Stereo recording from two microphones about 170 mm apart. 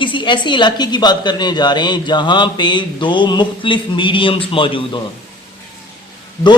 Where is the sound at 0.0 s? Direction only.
30° left (ahead or behind).